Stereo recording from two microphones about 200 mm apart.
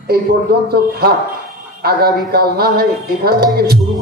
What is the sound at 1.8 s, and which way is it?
Speech, 50° right (ahead or behind).